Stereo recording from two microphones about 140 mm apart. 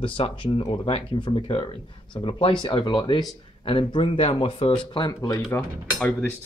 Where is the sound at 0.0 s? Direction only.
40° left (ahead or behind).